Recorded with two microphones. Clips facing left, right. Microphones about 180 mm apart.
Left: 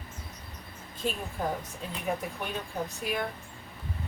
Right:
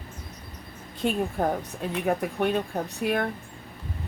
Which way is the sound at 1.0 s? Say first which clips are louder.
Right 7 dB; 60° right (ahead or behind).